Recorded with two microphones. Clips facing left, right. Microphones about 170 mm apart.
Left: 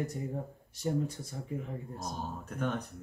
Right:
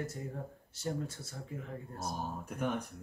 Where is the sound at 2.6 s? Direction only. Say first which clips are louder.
Left 1 dB; 10° right (ahead or behind).